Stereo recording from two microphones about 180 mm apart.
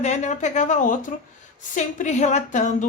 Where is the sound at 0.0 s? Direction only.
40° left (ahead or behind).